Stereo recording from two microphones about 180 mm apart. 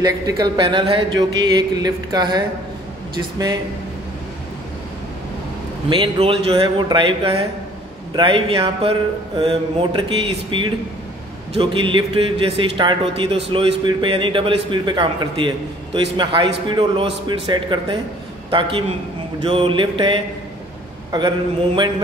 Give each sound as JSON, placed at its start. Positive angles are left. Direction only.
{"t": 0.0, "sound": "a man's voice", "side_deg": -25}
{"t": 5.9, "sound": "a man's voice", "side_deg": -30}